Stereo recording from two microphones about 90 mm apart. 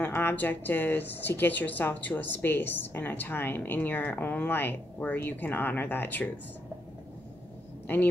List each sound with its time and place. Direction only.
0.0 s speech: 25° left (ahead or behind)
7.8 s vehicle: 20° left (ahead or behind)